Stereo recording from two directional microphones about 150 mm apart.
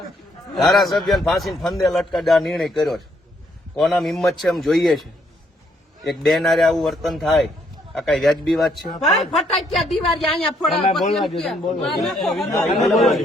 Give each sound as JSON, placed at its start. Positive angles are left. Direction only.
{"t": 0.5, "sound": "speech", "side_deg": 0}